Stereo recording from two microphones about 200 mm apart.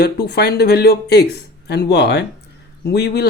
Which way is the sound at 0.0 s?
55° left (ahead or behind).